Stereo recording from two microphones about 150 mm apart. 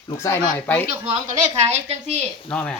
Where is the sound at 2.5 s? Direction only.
10° left (ahead or behind).